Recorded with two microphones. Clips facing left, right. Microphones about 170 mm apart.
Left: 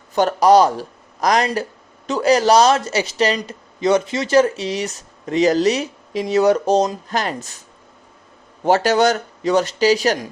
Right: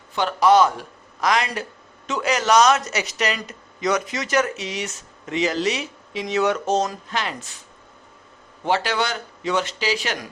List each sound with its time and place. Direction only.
0.1 s a man's voice: 40° left (ahead or behind)
8.6 s speech: 45° left (ahead or behind)